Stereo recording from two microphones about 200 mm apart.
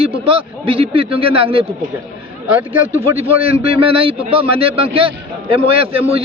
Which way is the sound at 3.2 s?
30° right (ahead or behind).